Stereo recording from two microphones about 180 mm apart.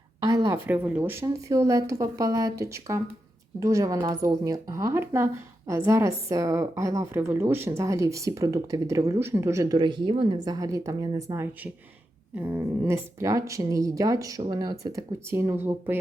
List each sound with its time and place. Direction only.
0.2 s a woman's voice: 20° right (ahead or behind)